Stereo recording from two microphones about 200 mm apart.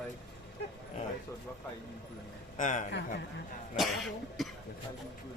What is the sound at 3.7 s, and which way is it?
Cough, centre (ahead or behind).